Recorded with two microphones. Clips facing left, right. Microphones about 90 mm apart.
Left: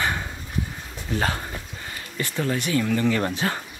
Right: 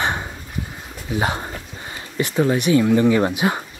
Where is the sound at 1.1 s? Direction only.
15° right (ahead or behind).